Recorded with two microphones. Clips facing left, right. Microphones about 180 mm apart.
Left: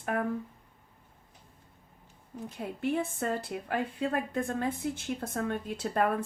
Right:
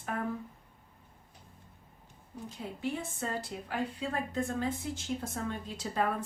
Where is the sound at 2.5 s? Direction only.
60° left (ahead or behind).